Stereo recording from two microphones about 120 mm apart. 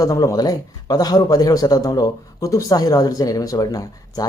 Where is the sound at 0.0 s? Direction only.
25° left (ahead or behind).